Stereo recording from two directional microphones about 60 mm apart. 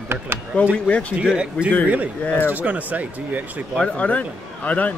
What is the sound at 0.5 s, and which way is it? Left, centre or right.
Speech, left.